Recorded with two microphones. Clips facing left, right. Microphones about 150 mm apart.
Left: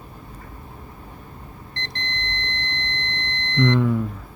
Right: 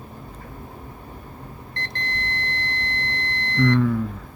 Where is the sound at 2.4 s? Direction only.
20° left (ahead or behind).